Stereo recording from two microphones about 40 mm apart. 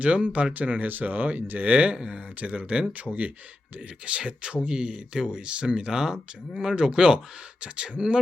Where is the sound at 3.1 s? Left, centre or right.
Left.